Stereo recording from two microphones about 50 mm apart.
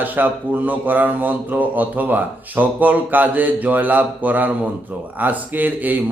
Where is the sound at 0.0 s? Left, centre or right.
Right.